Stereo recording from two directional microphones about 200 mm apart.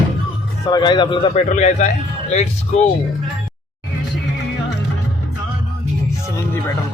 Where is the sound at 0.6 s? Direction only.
20° left (ahead or behind).